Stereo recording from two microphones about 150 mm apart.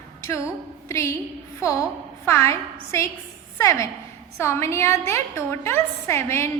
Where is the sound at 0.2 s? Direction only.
20° left (ahead or behind).